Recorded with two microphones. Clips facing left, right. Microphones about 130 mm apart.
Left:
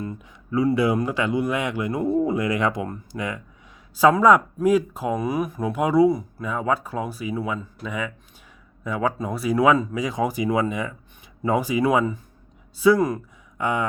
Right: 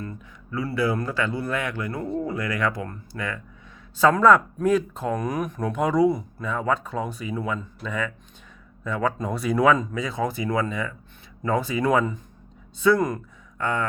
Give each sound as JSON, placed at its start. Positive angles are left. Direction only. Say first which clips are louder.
{"t": 0.0, "sound": "speech", "louder": "left 4 dB", "side_deg": 20}
{"t": 13.6, "sound": "speech", "louder": "left 2 dB", "side_deg": 15}